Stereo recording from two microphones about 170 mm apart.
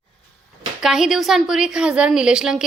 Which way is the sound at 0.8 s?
5° right (ahead or behind).